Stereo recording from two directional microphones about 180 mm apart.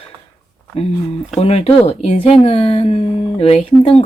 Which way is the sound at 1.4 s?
35° left (ahead or behind).